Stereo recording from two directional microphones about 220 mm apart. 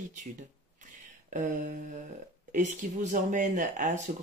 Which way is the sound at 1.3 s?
35° right (ahead or behind).